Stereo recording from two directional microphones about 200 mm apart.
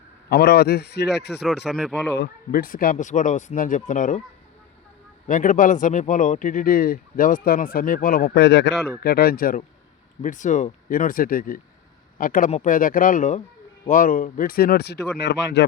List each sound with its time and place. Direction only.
0.3 s speech: 55° left (ahead or behind)
1.3 s speech: centre (ahead or behind)
2.1 s speech: 50° left (ahead or behind)
5.3 s speech: 40° left (ahead or behind); by 15.6 s 60° left (ahead or behind)